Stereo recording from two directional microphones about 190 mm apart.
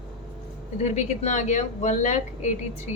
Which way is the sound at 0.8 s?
40° left (ahead or behind).